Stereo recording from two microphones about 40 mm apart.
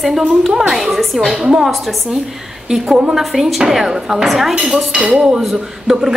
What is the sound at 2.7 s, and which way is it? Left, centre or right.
A woman's voice, centre.